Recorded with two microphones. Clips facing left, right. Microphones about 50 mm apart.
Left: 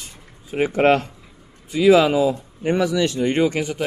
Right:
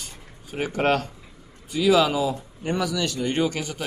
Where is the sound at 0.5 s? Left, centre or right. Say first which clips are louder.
Left 6 dB; left.